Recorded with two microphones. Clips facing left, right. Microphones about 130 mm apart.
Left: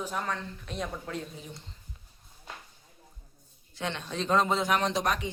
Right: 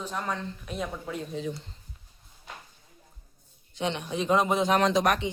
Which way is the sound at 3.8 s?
20° right (ahead or behind).